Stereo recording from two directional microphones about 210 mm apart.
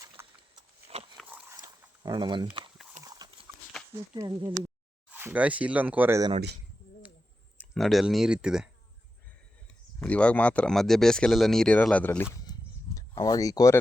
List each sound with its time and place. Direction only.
0.0 s a sound: 15° right (ahead or behind)
1.1 s dog: 5° right (ahead or behind)
2.0 s speech: 20° right (ahead or behind)
3.0 s horse: 20° right (ahead or behind)
4.1 s speech: 15° right (ahead or behind)
7.6 s speech: centre (ahead or behind)
10.0 s speech: 5° left (ahead or behind)
12.5 s a sound: 15° left (ahead or behind)